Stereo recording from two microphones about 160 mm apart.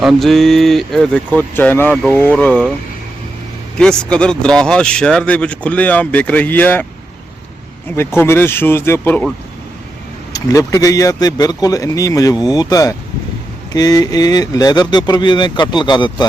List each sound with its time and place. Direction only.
0.0 s speech: centre (ahead or behind)
3.8 s speech: 5° left (ahead or behind)
7.9 s speech: 15° left (ahead or behind)
10.3 s speech: 20° left (ahead or behind)